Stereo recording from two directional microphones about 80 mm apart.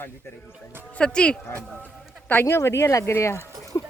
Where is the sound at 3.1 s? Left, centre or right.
Left.